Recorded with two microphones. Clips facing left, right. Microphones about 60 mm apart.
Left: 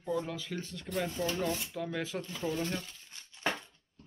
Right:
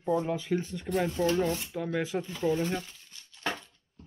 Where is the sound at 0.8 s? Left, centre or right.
Centre.